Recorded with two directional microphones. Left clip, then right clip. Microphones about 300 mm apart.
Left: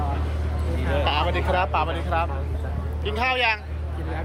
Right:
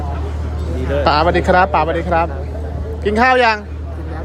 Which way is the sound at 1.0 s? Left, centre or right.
Right.